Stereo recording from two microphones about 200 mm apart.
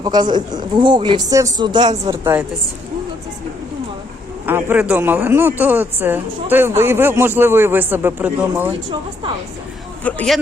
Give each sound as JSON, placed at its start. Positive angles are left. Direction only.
{"t": 0.0, "sound": "a man's voice", "side_deg": -20}
{"t": 4.4, "sound": "speech", "side_deg": -10}
{"t": 10.0, "sound": "speech", "side_deg": 5}